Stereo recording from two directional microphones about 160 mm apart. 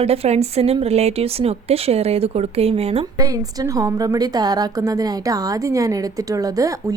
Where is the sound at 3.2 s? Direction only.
20° right (ahead or behind).